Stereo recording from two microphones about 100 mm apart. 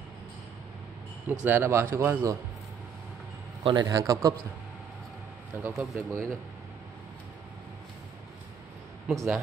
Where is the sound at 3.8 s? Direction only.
35° right (ahead or behind).